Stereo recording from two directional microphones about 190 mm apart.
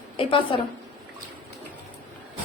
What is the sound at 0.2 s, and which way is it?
Speech, 25° left (ahead or behind).